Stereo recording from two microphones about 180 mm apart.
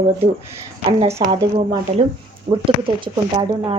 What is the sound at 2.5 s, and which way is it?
Speech, 30° right (ahead or behind).